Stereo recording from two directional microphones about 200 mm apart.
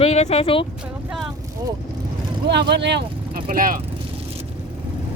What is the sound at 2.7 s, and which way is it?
Speech, 60° right (ahead or behind).